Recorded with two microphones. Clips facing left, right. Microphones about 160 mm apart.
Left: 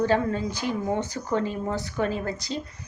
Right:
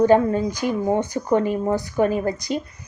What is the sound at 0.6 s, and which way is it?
Speech, 55° right (ahead or behind).